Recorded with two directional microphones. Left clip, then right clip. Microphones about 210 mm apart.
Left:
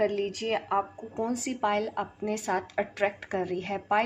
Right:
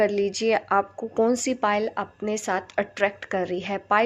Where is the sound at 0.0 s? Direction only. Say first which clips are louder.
Right 6 dB; 50° right (ahead or behind).